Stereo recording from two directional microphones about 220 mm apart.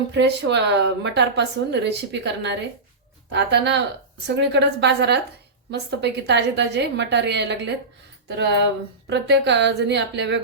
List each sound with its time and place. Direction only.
0.1 s a woman's voice: 55° right (ahead or behind)
9.0 s a woman's voice: 50° right (ahead or behind)